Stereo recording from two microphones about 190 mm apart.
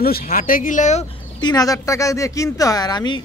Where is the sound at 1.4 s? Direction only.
20° left (ahead or behind).